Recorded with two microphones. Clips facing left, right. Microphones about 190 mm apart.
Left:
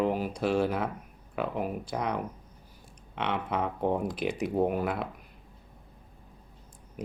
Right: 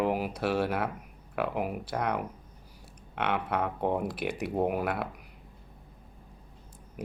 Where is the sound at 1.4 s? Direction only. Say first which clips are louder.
Even; 5° right (ahead or behind).